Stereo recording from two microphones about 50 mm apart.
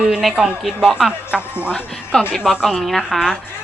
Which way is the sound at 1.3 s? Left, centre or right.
Right.